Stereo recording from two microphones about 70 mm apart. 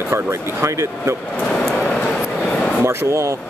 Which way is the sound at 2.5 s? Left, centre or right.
Centre.